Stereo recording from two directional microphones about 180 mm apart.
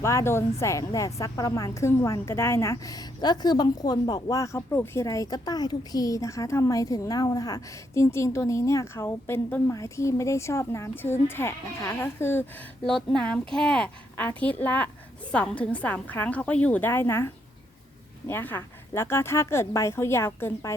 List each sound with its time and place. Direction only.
0.0 s a woman's voice: 15° left (ahead or behind)